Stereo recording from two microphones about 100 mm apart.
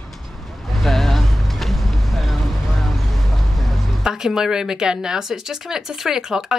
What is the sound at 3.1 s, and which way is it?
A woman's voice, centre (ahead or behind).